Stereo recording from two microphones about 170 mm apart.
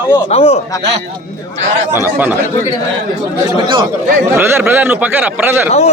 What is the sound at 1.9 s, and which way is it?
Speech, 10° right (ahead or behind).